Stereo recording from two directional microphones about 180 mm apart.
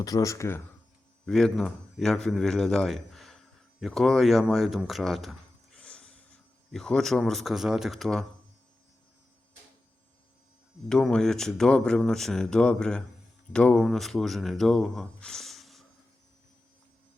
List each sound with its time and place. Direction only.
0.0 s speech: 20° left (ahead or behind)
1.2 s a man's voice: 5° left (ahead or behind)
10.8 s speech: 5° left (ahead or behind)